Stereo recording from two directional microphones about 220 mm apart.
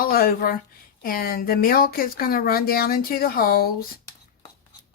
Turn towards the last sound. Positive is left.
turn(degrees=45)  # may be behind; listen again after turning